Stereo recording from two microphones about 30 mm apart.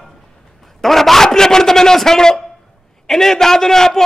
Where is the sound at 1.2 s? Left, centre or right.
Centre.